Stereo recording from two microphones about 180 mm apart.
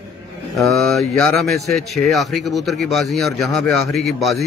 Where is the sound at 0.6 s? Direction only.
Centre (ahead or behind).